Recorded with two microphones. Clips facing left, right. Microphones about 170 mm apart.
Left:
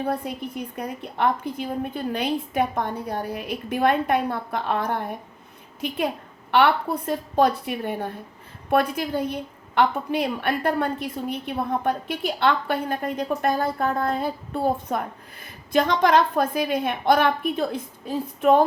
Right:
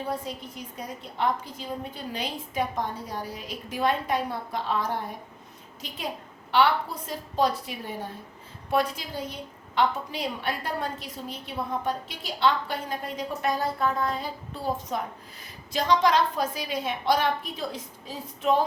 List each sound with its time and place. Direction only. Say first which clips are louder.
0.0 s a woman's voice: left 5 dB; 60° left (ahead or behind)